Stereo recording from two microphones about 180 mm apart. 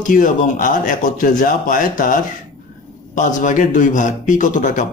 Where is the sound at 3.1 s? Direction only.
45° left (ahead or behind).